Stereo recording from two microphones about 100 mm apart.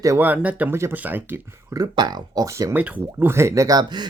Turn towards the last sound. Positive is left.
turn(degrees=-45)  # may be behind; listen again after turning